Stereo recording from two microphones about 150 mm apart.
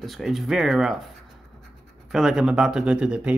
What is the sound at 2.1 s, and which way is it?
Speech, centre (ahead or behind).